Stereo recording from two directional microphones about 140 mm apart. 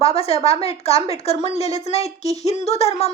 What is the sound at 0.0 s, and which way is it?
Speech, 45° left (ahead or behind).